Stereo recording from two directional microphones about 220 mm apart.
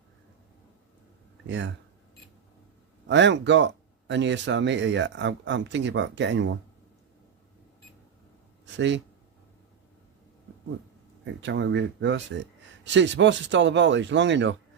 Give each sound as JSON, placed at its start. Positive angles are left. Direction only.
{"t": 1.5, "sound": "speech", "side_deg": -55}
{"t": 3.1, "sound": "speech", "side_deg": -55}
{"t": 8.6, "sound": "speech", "side_deg": -55}
{"t": 11.3, "sound": "speech", "side_deg": -55}